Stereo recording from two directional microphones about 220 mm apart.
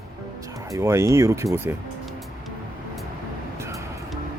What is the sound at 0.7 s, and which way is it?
Speech, 10° right (ahead or behind).